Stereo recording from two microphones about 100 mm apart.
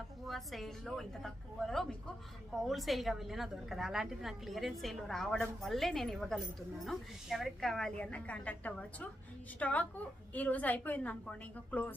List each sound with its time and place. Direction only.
0.3 s a woman's voice: centre (ahead or behind)